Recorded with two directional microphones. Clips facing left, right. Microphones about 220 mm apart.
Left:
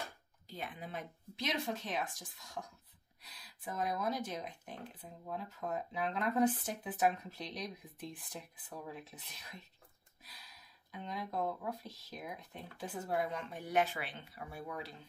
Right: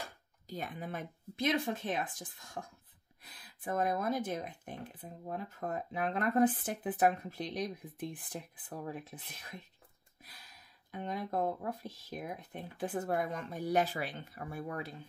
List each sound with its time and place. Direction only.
0.5 s speech: 45° right (ahead or behind)
10.9 s speech: 50° right (ahead or behind)